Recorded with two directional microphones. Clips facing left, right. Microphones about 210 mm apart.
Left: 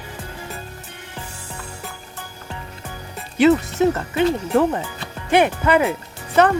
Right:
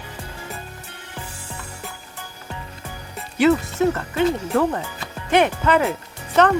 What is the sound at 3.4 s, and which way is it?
Speech, 20° left (ahead or behind).